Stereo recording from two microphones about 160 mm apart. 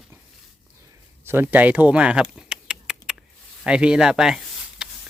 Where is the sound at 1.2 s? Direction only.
10° right (ahead or behind).